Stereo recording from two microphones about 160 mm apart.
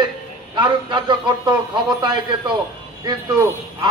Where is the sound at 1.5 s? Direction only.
25° right (ahead or behind).